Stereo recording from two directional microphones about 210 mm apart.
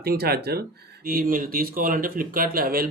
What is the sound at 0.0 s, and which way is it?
Speech, 50° right (ahead or behind).